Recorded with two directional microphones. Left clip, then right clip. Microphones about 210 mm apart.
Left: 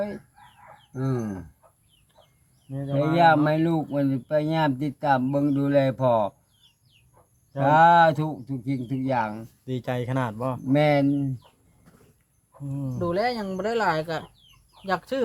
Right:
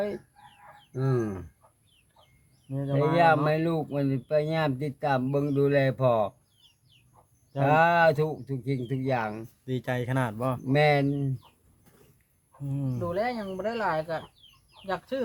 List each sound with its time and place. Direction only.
0.9 s speech: 30° right (ahead or behind)
2.6 s speech: 15° right (ahead or behind)
7.5 s speech: 15° right (ahead or behind)
9.6 s speech: centre (ahead or behind)
10.3 s speech: 15° right (ahead or behind)
12.6 s speech: 20° right (ahead or behind)
13.0 s speech: 50° left (ahead or behind)